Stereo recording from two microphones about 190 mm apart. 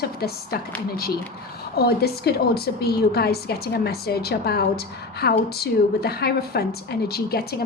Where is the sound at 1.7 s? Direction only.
55° left (ahead or behind).